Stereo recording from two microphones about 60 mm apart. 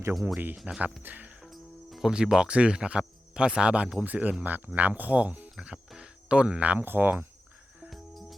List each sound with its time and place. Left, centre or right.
0.1 s speech: centre
1.0 s speech: right
1.4 s music: centre
2.0 s speech: centre
5.5 s speech: centre; by 7.3 s right
7.9 s music: centre